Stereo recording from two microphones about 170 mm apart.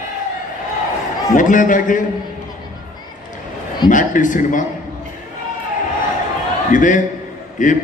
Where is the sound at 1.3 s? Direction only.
50° left (ahead or behind).